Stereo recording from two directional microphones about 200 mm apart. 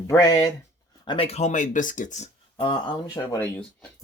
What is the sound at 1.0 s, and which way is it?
Speech, 25° left (ahead or behind).